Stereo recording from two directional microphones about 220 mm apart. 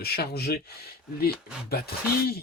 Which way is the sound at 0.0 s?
45° left (ahead or behind).